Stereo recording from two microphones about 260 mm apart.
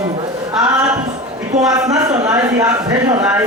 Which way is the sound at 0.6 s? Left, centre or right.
Centre.